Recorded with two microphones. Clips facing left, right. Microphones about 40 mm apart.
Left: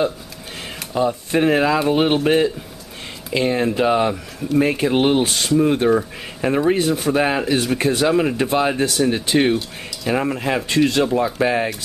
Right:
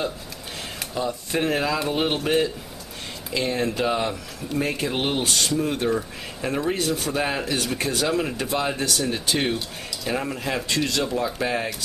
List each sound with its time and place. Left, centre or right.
0.9 s speech: left